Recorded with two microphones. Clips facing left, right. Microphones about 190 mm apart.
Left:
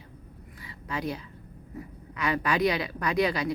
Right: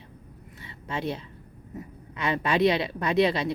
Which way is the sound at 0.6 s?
25° right (ahead or behind).